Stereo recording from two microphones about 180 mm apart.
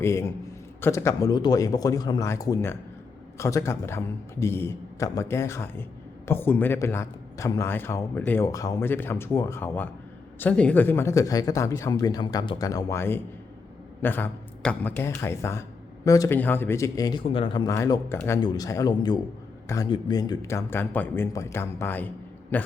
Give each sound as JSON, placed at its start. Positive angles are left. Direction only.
{"t": 0.0, "sound": "a man's voice", "side_deg": 15}